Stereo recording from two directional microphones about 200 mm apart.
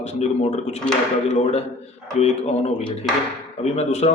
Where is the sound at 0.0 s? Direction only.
35° left (ahead or behind).